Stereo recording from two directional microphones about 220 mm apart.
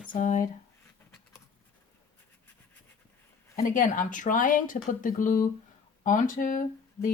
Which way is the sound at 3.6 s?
35° left (ahead or behind).